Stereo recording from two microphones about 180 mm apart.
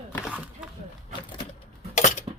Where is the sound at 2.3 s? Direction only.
25° right (ahead or behind).